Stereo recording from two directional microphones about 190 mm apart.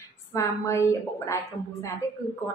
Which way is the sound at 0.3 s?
15° left (ahead or behind).